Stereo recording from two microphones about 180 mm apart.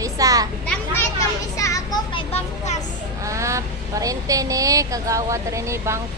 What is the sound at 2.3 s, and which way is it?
Speech, 40° left (ahead or behind).